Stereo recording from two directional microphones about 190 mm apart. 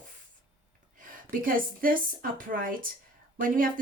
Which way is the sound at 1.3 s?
45° right (ahead or behind).